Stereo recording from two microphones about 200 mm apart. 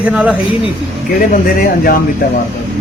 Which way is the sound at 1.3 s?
45° left (ahead or behind).